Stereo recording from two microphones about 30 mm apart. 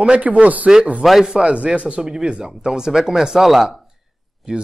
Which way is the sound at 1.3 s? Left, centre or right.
Right.